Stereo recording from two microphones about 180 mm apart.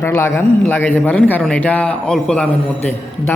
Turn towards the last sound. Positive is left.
turn(degrees=10)  # may be behind; listen again after turning